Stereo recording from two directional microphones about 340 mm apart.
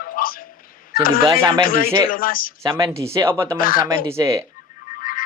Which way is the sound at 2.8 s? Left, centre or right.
Centre.